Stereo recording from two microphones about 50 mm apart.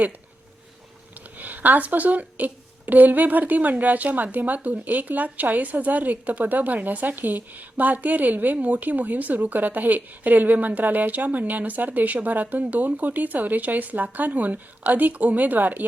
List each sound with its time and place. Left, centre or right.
1.1 s speech: right